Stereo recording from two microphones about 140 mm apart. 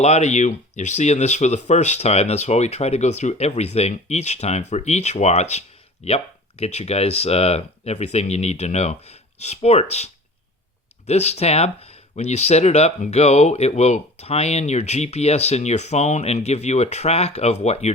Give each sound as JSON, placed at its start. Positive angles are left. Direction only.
{"t": 0.0, "sound": "speech", "side_deg": 55}